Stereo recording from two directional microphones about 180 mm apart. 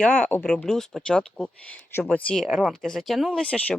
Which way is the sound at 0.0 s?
5° left (ahead or behind).